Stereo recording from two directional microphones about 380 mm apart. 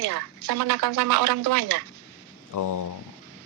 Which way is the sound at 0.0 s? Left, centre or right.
Right.